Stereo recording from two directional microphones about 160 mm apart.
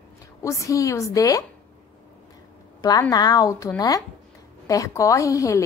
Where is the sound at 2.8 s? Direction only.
20° left (ahead or behind).